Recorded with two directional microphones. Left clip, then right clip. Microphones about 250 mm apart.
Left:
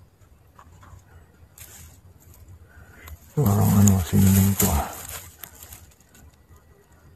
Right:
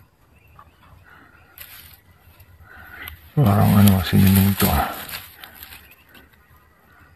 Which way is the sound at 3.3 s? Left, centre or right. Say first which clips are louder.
Right 5 dB; right.